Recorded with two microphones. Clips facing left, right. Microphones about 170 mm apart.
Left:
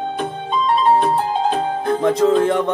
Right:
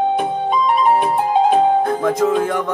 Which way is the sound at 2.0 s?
25° left (ahead or behind).